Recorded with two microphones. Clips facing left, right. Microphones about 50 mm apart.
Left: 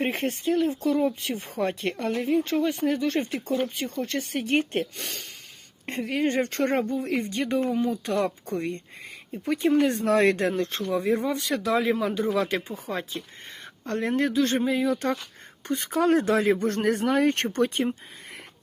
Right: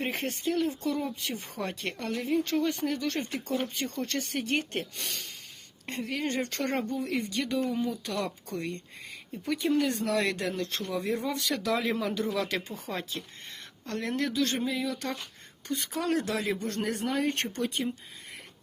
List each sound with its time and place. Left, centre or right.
0.5 s speech: left
2.2 s speech: centre
2.8 s speech: left
3.5 s speech: centre
4.9 s speech: left; by 13.2 s centre
13.8 s speech: left